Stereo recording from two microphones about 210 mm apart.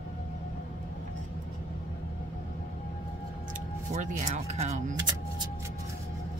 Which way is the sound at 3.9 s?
35° right (ahead or behind).